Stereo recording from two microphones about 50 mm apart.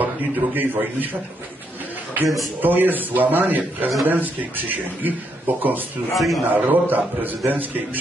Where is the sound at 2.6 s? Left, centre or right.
Right.